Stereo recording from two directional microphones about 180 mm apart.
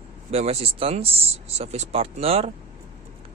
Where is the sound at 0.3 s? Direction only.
35° right (ahead or behind).